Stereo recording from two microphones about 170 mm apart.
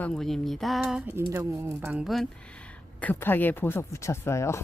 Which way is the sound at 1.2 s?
20° right (ahead or behind).